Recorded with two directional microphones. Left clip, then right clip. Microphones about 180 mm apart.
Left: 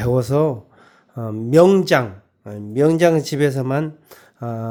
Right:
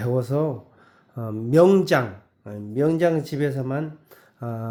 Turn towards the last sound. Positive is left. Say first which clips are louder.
# left 5 dB
turn(degrees=30)  # may be behind; listen again after turning